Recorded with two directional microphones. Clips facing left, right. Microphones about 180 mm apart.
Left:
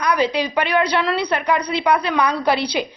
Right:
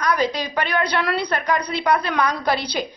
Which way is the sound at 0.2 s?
45° right (ahead or behind).